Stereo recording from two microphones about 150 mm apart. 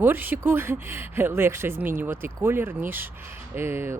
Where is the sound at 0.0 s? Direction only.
15° right (ahead or behind).